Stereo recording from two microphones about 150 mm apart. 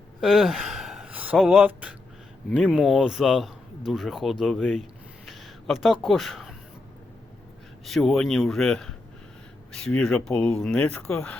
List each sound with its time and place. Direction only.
0.2 s speech: centre (ahead or behind)
7.9 s speech: centre (ahead or behind)